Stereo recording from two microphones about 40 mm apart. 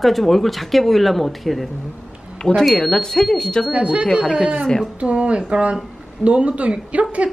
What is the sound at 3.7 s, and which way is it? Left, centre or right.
Speech, right.